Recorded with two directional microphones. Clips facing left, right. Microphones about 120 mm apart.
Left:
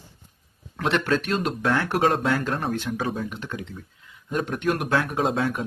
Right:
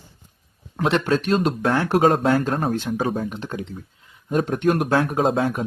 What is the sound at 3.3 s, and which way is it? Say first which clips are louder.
Speech: right 4 dB; 30° right (ahead or behind).